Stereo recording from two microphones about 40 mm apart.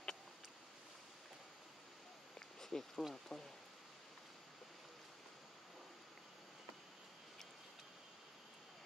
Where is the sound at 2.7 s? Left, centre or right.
Centre.